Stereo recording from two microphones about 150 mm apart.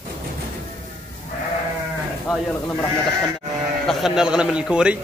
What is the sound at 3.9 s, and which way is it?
A man's voice, centre (ahead or behind).